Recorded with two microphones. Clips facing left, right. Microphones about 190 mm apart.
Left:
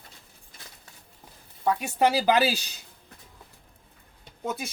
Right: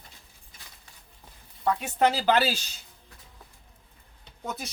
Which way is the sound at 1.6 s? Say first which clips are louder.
Left 1 dB; 10° left (ahead or behind).